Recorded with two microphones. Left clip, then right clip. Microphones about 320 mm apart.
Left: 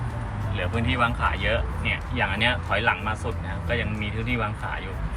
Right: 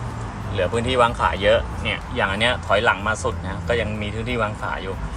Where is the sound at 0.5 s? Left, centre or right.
Centre.